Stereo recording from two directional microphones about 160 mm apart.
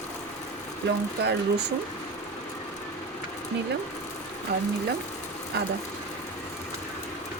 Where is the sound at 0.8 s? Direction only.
90° right.